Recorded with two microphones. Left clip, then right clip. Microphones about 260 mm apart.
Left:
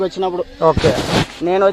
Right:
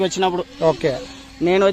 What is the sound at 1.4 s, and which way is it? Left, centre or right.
Speech, right.